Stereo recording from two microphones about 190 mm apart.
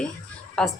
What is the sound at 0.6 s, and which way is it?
Speech, 5° left (ahead or behind).